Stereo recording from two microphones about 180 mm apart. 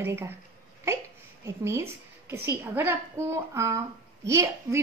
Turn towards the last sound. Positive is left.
turn(degrees=-15)  # may be behind; listen again after turning